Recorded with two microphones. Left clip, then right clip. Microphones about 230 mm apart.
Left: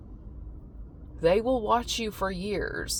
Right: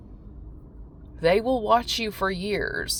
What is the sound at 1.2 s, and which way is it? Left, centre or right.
Speech, right.